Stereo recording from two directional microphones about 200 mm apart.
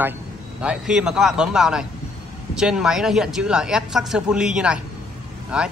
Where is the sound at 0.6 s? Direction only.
5° right (ahead or behind).